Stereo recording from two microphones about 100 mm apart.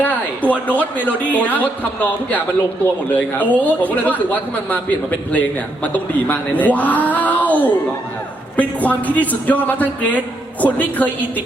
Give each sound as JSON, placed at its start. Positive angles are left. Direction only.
{"t": 0.0, "sound": "speech", "side_deg": 15}